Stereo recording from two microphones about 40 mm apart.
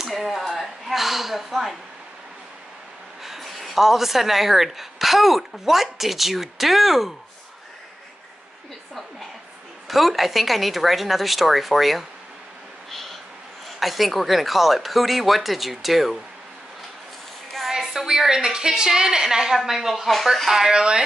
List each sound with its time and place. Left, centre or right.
0.1 s a sound: centre
3.3 s speech: centre
9.8 s speech: centre
12.9 s owl: centre
13.7 s speech: centre
17.6 s a woman's voice: centre
20.7 s speech: right